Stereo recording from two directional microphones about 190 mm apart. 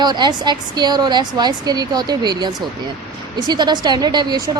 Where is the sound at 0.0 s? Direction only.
20° right (ahead or behind).